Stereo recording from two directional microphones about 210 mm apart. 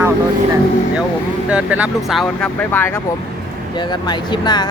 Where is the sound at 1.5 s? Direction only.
5° right (ahead or behind); by 3.0 s 10° left (ahead or behind).